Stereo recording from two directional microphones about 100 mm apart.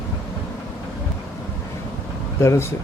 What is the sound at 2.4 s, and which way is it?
Speech, 30° left (ahead or behind).